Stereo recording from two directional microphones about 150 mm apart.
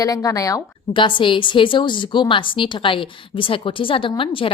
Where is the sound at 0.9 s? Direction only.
35° left (ahead or behind).